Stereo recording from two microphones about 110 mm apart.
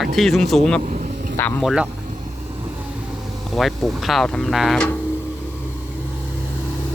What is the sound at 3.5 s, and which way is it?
Speech, centre (ahead or behind).